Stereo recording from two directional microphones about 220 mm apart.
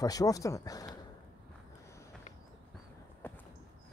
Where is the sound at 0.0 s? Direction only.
15° left (ahead or behind).